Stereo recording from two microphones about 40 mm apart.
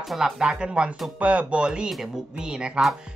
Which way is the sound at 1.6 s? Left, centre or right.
Right.